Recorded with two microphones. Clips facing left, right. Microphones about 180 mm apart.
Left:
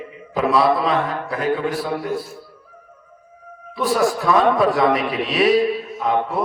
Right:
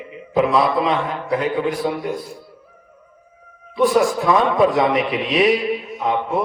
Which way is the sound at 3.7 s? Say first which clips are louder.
Right 3 dB; 20° right (ahead or behind).